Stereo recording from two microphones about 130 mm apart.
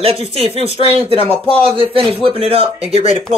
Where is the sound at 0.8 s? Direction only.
45° right (ahead or behind).